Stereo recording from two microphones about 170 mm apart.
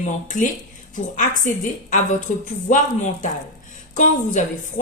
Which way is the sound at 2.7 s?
45° left (ahead or behind).